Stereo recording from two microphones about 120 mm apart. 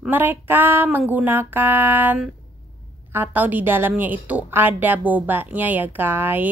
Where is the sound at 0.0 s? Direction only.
15° right (ahead or behind).